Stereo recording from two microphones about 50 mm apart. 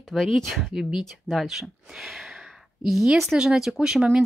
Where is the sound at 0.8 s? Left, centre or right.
Centre.